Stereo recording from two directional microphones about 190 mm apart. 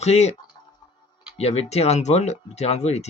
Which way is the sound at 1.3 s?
35° left (ahead or behind).